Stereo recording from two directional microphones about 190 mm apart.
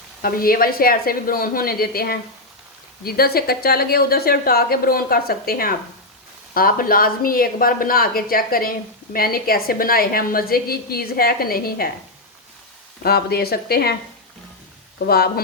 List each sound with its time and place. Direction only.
0.2 s a woman's voice: 50° left (ahead or behind)
13.0 s speech: 55° left (ahead or behind)
14.9 s speech: 55° left (ahead or behind)